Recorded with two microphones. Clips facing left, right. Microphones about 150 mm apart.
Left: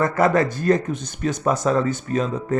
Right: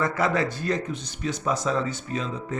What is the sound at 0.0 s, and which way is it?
Speech, 50° left (ahead or behind).